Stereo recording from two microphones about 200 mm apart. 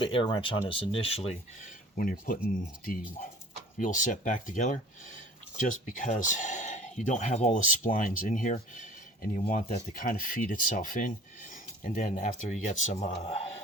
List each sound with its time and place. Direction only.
0.0 s speech: 25° left (ahead or behind)
2.0 s speech: 45° left (ahead or behind)
3.8 s speech: 40° left (ahead or behind)